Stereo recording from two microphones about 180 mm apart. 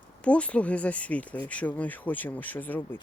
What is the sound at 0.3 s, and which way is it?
Speech, 5° left (ahead or behind).